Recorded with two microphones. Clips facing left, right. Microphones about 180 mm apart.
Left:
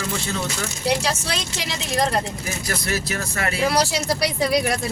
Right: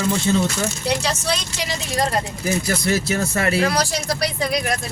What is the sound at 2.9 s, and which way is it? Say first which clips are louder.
Speech: right 6 dB; 25° right (ahead or behind).